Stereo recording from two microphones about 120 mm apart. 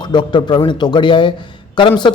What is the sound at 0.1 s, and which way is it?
A man's voice, 40° left (ahead or behind).